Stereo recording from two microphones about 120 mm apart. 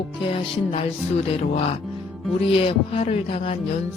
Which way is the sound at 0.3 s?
50° left (ahead or behind).